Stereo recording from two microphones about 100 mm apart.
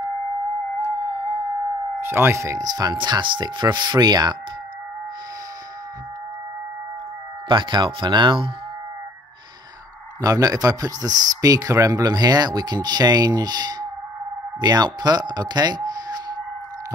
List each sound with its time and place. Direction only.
0.7 s music: 25° right (ahead or behind)
2.0 s speech: 25° right (ahead or behind); by 4.4 s 45° right (ahead or behind)
7.4 s speech: 55° right (ahead or behind)
10.2 s a man's voice: 35° right (ahead or behind)